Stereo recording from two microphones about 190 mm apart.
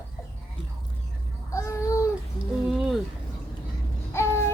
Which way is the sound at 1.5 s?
15° left (ahead or behind).